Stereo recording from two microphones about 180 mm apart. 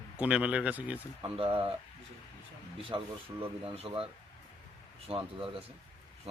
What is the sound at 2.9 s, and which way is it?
Speech, 25° right (ahead or behind).